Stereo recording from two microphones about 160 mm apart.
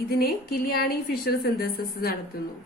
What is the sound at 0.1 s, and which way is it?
A woman's voice, 70° left (ahead or behind).